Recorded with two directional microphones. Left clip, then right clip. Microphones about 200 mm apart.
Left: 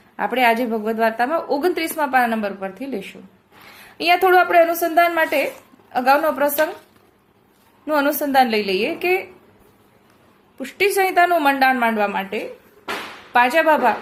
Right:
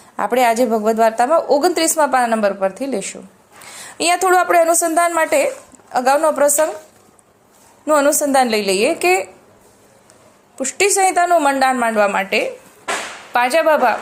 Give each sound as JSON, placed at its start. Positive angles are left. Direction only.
{"t": 0.2, "sound": "a woman's voice", "side_deg": -20}
{"t": 7.9, "sound": "a woman's voice", "side_deg": -20}
{"t": 10.6, "sound": "a woman's voice", "side_deg": -15}